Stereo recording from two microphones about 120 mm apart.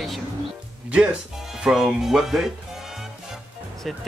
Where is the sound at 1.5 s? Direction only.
5° right (ahead or behind).